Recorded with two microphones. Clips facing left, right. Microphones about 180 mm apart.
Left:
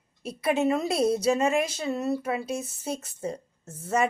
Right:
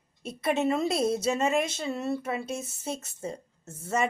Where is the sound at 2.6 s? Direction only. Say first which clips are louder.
Left 2 dB; 25° right (ahead or behind).